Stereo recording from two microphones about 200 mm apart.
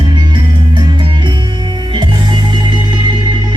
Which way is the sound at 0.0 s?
20° right (ahead or behind).